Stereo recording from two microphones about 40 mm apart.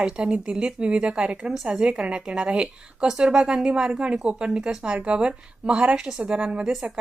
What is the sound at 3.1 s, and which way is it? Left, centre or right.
A woman's voice, centre.